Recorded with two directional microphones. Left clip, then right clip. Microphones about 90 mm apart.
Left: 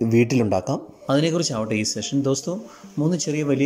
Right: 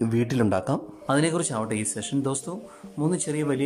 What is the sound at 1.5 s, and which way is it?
Speech, 10° left (ahead or behind).